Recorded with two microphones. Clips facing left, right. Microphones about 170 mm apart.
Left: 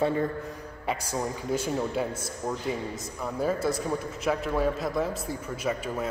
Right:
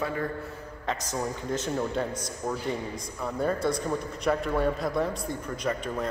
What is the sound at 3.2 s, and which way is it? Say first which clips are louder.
A man's voice: even; 5° left (ahead or behind).